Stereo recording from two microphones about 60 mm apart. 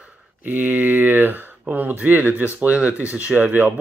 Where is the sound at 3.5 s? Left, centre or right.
Right.